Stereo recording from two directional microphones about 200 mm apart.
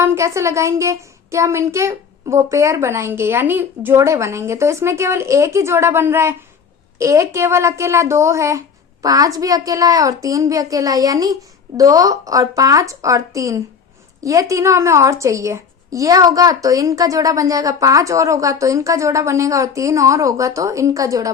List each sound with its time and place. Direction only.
0.0 s a woman's voice: 15° right (ahead or behind)